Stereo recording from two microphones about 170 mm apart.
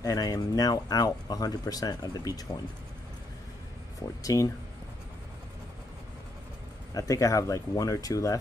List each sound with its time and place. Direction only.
0.0 s speech: 20° left (ahead or behind)
4.2 s speech: 20° left (ahead or behind)
6.9 s speech: 20° left (ahead or behind)